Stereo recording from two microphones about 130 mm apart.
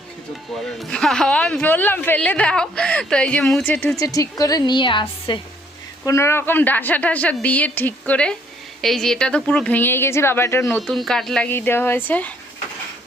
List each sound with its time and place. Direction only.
0.5 s speech: centre (ahead or behind)
3.9 s a woman's voice: 25° left (ahead or behind)
6.1 s speech: 20° left (ahead or behind)
10.8 s speech: 5° left (ahead or behind)
11.4 s speech: 15° left (ahead or behind)